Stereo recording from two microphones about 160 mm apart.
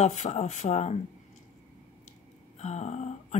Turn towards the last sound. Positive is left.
turn(degrees=45)  # may be behind; listen again after turning